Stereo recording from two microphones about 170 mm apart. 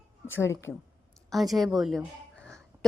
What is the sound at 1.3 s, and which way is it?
Speech, centre (ahead or behind).